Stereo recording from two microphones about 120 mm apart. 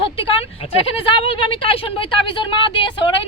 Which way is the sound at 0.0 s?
50° left (ahead or behind).